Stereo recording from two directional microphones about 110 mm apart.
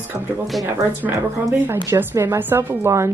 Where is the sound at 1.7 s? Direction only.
25° right (ahead or behind).